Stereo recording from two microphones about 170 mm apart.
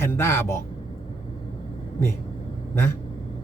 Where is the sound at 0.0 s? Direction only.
15° left (ahead or behind).